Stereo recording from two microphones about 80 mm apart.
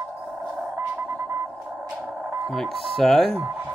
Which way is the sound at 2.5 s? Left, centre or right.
Centre.